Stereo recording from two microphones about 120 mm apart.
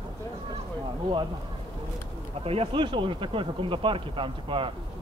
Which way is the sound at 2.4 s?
50° right (ahead or behind).